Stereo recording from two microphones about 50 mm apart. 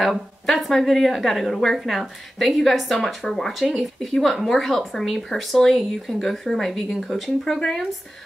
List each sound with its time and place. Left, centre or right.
0.5 s speech: centre